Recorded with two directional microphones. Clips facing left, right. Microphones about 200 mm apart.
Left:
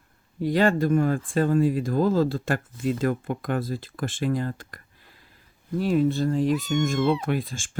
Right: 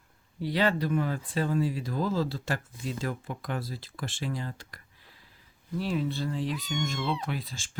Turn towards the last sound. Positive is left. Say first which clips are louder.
# left 8 dB
turn(degrees=50)  # may be behind; listen again after turning